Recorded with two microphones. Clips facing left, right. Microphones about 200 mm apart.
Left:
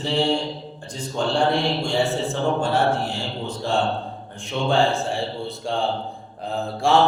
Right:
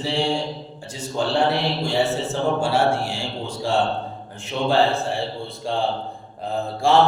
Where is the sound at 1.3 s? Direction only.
5° right (ahead or behind).